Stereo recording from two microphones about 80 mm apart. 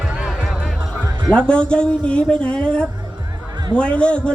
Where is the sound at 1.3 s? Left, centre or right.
Centre.